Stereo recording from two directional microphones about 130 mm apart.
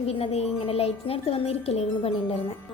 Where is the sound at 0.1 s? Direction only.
50° left (ahead or behind).